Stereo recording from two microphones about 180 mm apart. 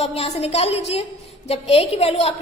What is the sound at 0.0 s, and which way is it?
A woman's voice, 35° left (ahead or behind).